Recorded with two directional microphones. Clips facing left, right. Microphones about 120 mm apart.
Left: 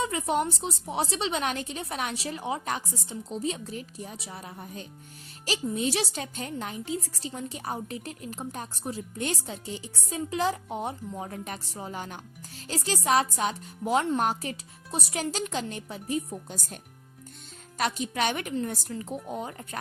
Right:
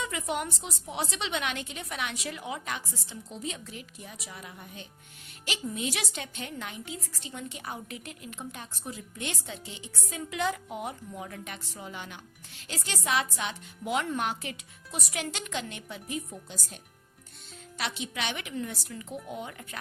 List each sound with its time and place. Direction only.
0.0 s a woman's voice: 35° left (ahead or behind)